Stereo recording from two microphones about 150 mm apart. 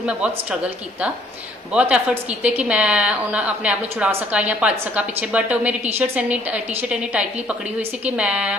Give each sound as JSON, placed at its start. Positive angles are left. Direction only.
{"t": 0.0, "sound": "a woman's voice", "side_deg": -10}
{"t": 1.7, "sound": "a woman's voice", "side_deg": -10}